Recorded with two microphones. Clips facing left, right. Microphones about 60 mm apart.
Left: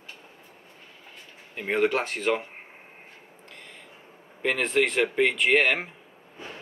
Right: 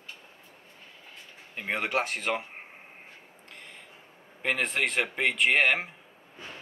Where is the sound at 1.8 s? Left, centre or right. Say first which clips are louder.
Left 5 dB; right.